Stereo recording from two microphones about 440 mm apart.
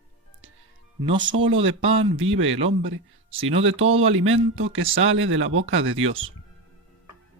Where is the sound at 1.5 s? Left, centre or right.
Right.